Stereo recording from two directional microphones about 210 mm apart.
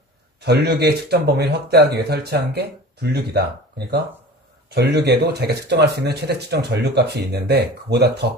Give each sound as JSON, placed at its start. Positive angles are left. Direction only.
{"t": 0.4, "sound": "speech", "side_deg": -50}